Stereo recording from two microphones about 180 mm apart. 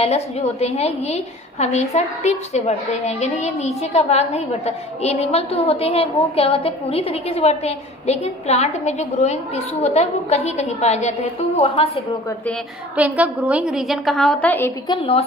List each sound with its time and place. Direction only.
0.0 s a woman's voice: 35° left (ahead or behind)
12.9 s a woman's voice: 10° right (ahead or behind); by 14.7 s 10° left (ahead or behind)
14.9 s a woman's voice: 30° left (ahead or behind)